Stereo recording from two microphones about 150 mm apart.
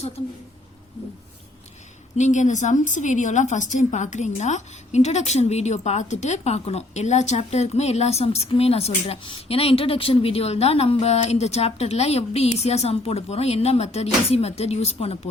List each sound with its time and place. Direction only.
2.1 s a woman's voice: 55° left (ahead or behind)